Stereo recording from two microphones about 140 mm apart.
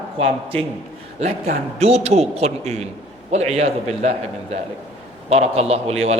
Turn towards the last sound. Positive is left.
turn(degrees=-45)  # may be behind; listen again after turning